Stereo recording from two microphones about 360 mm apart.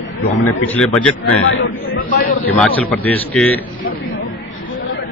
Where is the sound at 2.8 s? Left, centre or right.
Centre.